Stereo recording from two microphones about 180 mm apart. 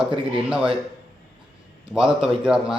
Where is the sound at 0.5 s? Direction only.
5° right (ahead or behind).